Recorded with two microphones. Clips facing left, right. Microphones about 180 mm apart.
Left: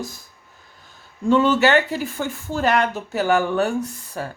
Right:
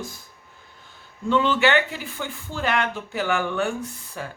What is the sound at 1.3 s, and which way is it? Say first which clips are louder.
Speech: left 4 dB; 45° left (ahead or behind).